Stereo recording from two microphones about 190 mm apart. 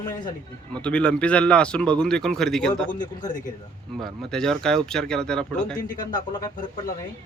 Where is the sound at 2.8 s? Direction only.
45° left (ahead or behind).